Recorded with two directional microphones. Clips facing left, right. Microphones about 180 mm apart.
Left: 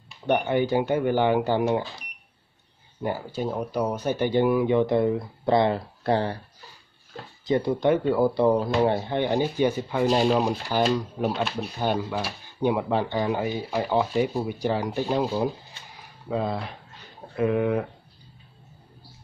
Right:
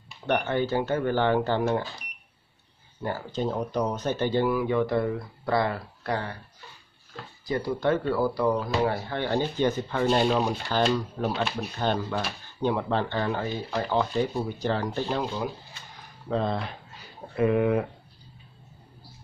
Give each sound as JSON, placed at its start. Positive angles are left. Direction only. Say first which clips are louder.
{"t": 0.3, "sound": "speech", "louder": "left 3 dB", "side_deg": 15}
{"t": 3.0, "sound": "speech", "louder": "left 1 dB", "side_deg": 15}
{"t": 7.4, "sound": "speech", "louder": "left 4 dB", "side_deg": 20}